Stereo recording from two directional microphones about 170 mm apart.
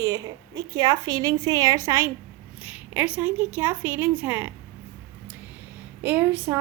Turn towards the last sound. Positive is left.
turn(degrees=-10)  # may be behind; listen again after turning